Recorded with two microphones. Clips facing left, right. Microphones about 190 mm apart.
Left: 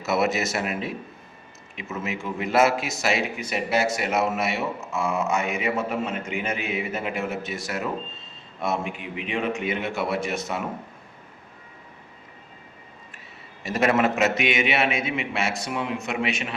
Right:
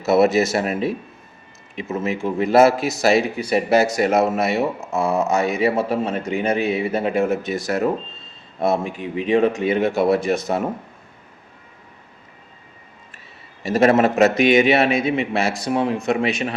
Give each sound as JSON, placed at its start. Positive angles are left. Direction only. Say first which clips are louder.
{"t": 0.0, "sound": "speech", "louder": "right 8 dB", "side_deg": -30}
{"t": 13.6, "sound": "speech", "louder": "right 6 dB", "side_deg": -30}